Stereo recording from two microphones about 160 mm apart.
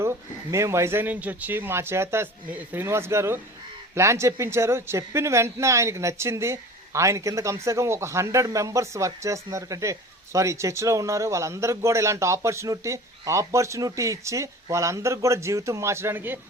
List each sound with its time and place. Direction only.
0.0 s speech: 15° right (ahead or behind)